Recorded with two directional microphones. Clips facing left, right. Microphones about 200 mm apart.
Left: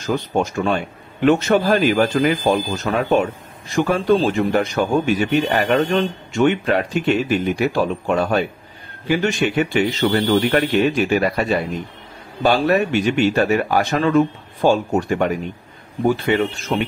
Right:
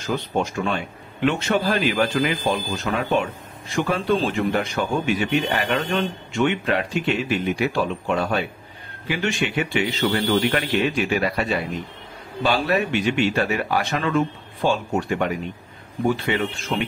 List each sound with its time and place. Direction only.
0.0 s speech: 45° left (ahead or behind)